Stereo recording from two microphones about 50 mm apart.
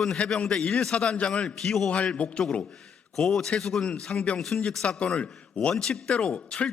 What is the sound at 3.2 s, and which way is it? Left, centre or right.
Speech, centre.